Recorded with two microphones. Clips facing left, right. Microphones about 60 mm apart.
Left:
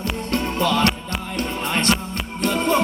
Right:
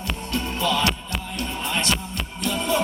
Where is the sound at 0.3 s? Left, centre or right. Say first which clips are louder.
Left 3 dB; left.